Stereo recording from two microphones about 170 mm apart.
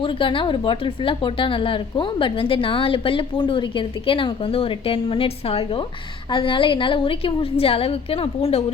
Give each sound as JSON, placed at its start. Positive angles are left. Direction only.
{"t": 0.0, "sound": "a woman's voice", "side_deg": 30}